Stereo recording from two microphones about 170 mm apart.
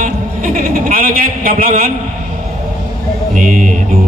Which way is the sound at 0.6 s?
55° right (ahead or behind).